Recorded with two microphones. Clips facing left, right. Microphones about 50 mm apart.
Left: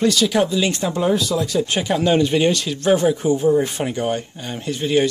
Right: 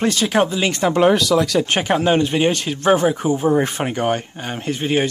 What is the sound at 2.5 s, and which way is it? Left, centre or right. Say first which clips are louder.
Speech: right 1 dB; right.